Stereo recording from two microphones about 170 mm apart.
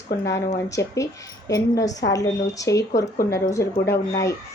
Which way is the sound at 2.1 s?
20° left (ahead or behind).